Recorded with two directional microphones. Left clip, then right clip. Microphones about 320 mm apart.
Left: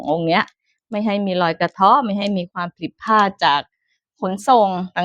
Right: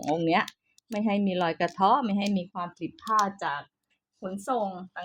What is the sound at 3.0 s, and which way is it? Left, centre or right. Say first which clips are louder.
Speech: left 11 dB; left.